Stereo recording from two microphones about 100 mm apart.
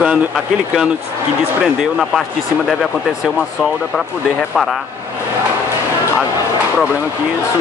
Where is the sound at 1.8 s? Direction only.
Centre (ahead or behind).